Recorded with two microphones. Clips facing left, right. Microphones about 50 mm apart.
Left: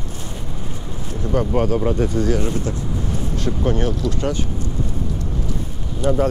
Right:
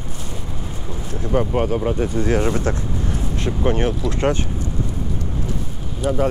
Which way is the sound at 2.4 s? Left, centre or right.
Right.